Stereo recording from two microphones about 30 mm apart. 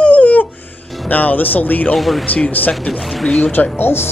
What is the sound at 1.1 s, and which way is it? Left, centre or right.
Speech, left.